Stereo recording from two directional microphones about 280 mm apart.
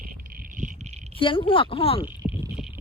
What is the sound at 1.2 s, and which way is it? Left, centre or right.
Speech, centre.